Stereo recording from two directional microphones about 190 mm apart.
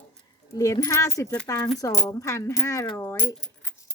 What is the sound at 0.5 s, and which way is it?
A woman's voice, 20° left (ahead or behind).